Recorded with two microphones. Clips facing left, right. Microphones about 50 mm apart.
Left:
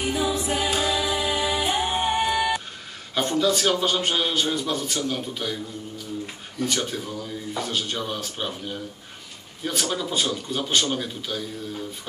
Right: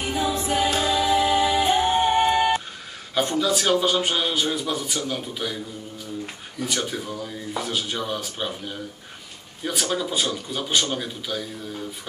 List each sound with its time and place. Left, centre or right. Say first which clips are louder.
0.3 s music: right 2 dB; centre
2.1 s music: right 4 dB; centre
3.2 s a man's voice: even; centre
6.8 s a man's voice: right 1 dB; centre